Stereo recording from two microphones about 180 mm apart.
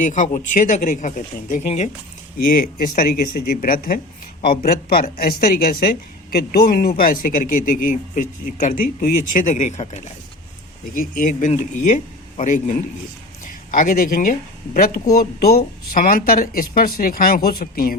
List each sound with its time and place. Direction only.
0.0 s a man's voice: 45° left (ahead or behind)
2.5 s a man's voice: 50° left (ahead or behind)
10.9 s a man's voice: 50° left (ahead or behind)